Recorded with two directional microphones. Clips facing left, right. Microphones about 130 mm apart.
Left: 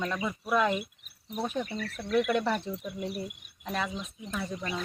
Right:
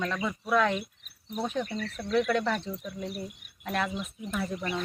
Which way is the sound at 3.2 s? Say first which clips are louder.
Right 1 dB; 15° left (ahead or behind).